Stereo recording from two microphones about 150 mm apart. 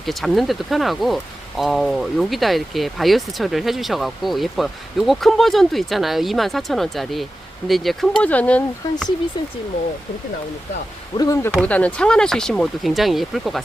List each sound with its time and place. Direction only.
0.0 s speech: centre (ahead or behind)
11.2 s speech: 25° left (ahead or behind)
11.6 s speech: 10° left (ahead or behind)